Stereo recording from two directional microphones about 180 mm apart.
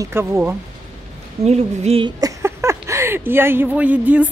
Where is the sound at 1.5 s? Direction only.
35° right (ahead or behind).